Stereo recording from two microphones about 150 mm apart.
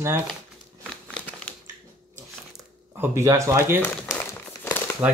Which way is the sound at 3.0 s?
20° right (ahead or behind).